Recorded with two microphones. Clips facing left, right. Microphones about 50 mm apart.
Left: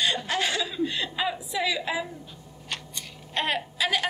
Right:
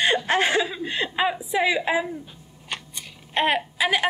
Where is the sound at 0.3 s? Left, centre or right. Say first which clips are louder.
Right 6 dB; right.